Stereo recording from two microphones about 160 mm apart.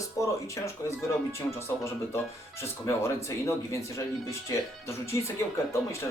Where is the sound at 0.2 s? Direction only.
20° left (ahead or behind).